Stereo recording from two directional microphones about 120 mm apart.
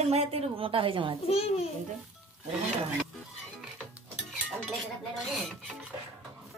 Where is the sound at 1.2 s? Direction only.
60° left (ahead or behind).